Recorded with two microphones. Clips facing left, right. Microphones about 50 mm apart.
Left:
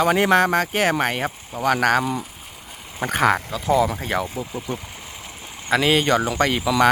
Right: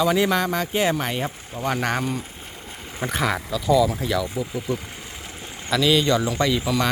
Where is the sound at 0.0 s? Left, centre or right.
Left.